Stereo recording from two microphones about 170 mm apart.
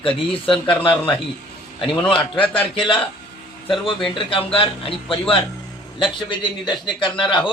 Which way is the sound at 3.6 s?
30° left (ahead or behind).